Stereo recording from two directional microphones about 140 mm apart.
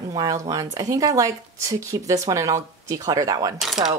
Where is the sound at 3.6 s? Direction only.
5° right (ahead or behind).